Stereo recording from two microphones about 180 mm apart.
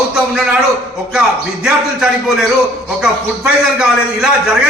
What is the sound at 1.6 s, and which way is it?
A man's voice, 5° right (ahead or behind).